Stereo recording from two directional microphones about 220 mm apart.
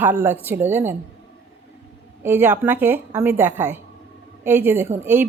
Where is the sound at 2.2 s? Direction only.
10° right (ahead or behind).